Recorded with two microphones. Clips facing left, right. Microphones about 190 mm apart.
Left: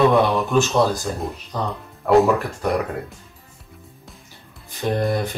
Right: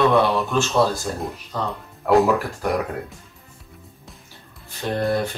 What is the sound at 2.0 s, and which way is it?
Speech, centre (ahead or behind).